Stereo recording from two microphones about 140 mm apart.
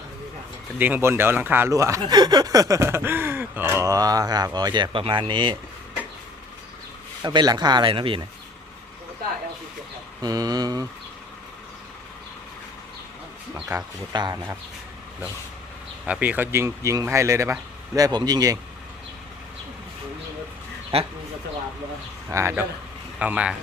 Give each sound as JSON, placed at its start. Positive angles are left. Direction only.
{"t": 0.8, "sound": "speech", "side_deg": -10}
{"t": 7.2, "sound": "speech", "side_deg": -30}
{"t": 10.2, "sound": "speech", "side_deg": -25}
{"t": 13.7, "sound": "speech", "side_deg": -30}
{"t": 16.0, "sound": "speech", "side_deg": -10}
{"t": 20.9, "sound": "speech", "side_deg": -45}
{"t": 22.3, "sound": "speech", "side_deg": -20}